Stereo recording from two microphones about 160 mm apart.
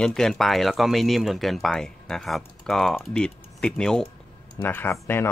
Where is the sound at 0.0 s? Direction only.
5° left (ahead or behind).